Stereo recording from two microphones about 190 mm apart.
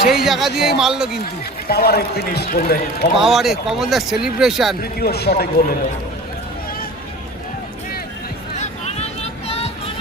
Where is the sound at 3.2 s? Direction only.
Centre (ahead or behind).